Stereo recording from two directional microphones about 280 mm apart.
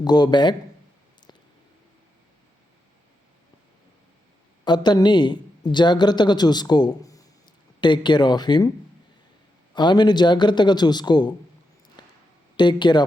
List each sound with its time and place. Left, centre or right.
0.0 s a man's voice: centre
4.6 s a man's voice: centre
9.7 s a man's voice: centre
12.0 s a sound: centre
12.5 s a man's voice: centre